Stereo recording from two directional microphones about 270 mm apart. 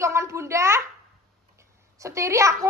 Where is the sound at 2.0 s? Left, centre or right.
Centre.